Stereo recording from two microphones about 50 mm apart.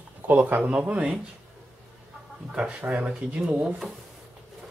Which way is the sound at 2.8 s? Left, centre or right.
Right.